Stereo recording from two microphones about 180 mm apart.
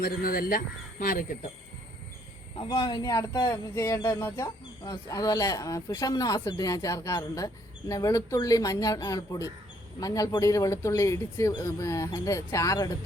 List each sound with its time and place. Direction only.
0.0 s speech: 55° left (ahead or behind)
2.6 s speech: 25° left (ahead or behind)